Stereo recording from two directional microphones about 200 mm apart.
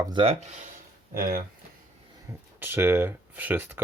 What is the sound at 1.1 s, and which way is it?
Speech, 45° right (ahead or behind).